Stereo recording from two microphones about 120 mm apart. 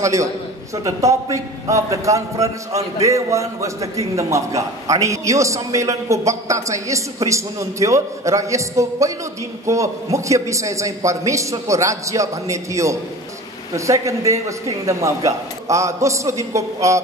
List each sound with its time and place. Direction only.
0.0 s a man's voice: 25° right (ahead or behind)